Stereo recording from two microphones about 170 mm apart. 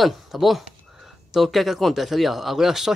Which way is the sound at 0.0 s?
Centre (ahead or behind).